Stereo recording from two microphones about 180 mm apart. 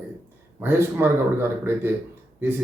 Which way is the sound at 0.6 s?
10° right (ahead or behind).